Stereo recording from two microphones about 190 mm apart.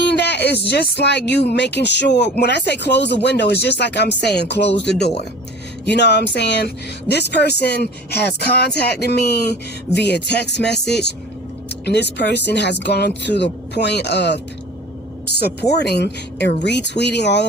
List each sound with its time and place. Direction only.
0.0 s speech: 65° left (ahead or behind)
15.8 s speech: 60° left (ahead or behind)